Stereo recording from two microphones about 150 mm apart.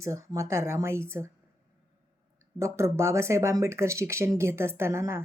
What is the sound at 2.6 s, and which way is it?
Speech, 20° right (ahead or behind).